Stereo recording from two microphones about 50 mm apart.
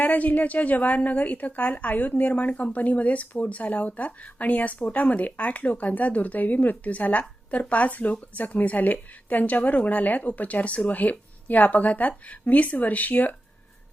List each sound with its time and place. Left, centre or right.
0.0 s a woman's voice: left